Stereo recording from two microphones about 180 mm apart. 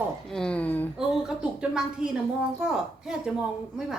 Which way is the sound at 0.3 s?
5° left (ahead or behind).